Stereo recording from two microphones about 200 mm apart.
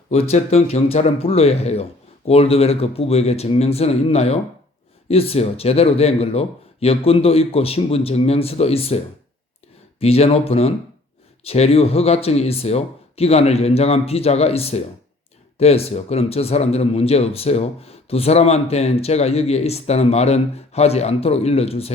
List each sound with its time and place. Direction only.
0.1 s speech: 30° left (ahead or behind)
10.0 s speech: 30° left (ahead or behind)